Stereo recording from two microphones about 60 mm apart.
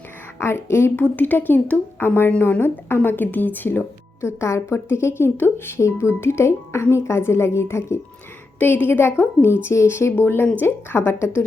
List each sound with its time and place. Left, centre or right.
0.3 s speech: left
1.1 s speech: left
2.0 s a woman's voice: left